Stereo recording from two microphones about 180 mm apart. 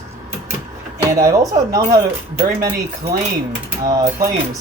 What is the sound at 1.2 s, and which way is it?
Speech, 20° right (ahead or behind).